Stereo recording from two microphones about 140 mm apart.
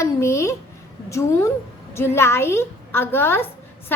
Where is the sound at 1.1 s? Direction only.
20° left (ahead or behind).